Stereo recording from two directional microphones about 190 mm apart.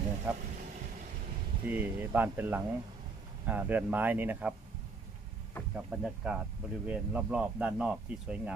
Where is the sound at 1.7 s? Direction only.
10° right (ahead or behind).